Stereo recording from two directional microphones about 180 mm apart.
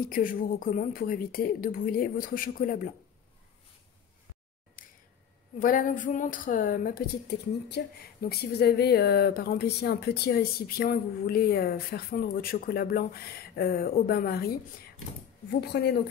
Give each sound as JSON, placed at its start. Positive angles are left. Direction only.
{"t": 0.1, "sound": "a woman's voice", "side_deg": 50}
{"t": 5.6, "sound": "a woman's voice", "side_deg": 50}
{"t": 15.6, "sound": "a woman's voice", "side_deg": 65}